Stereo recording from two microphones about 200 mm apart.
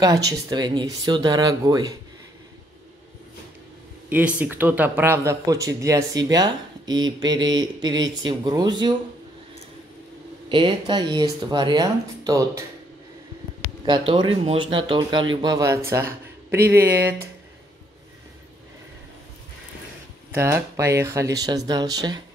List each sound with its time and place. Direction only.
0.3 s speech: 20° right (ahead or behind)
4.1 s speech: 5° right (ahead or behind)
10.5 s speech: 25° right (ahead or behind)
13.8 s speech: 20° right (ahead or behind)
20.2 s speech: 10° right (ahead or behind)